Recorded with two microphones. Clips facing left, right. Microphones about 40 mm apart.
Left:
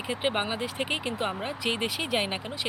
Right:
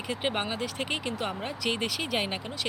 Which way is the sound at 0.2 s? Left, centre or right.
Centre.